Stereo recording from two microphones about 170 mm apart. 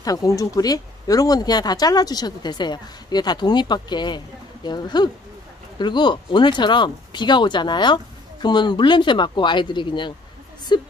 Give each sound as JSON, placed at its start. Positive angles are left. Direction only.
{"t": 0.0, "sound": "speech", "side_deg": 20}